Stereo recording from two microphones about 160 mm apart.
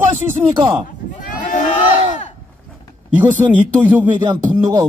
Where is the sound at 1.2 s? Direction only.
55° left (ahead or behind).